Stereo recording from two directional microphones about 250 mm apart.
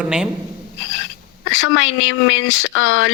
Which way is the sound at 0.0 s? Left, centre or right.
Centre.